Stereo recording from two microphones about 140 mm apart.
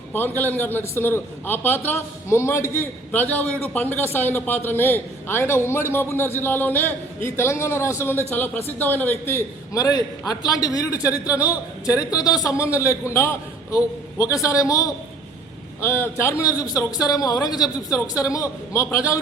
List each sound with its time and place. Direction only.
0.1 s a man's voice: 15° left (ahead or behind)